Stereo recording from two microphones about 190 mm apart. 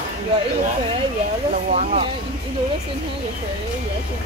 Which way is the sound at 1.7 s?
35° right (ahead or behind).